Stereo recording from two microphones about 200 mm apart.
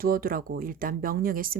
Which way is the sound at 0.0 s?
45° right (ahead or behind).